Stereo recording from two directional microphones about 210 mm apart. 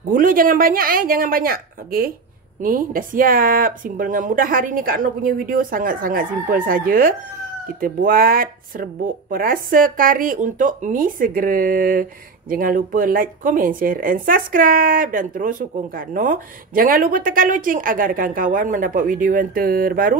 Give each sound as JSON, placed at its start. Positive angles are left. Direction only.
{"t": 0.1, "sound": "speech", "side_deg": -40}